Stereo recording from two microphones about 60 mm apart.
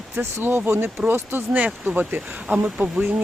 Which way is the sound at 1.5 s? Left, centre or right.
Right.